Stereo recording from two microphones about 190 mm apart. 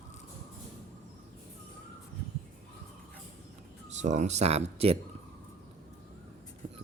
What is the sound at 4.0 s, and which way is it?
Speech, 40° right (ahead or behind).